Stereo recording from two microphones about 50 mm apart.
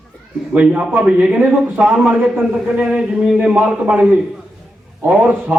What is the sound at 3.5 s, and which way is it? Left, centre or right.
Speech, right.